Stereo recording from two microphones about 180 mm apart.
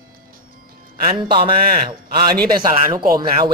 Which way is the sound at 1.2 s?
25° right (ahead or behind).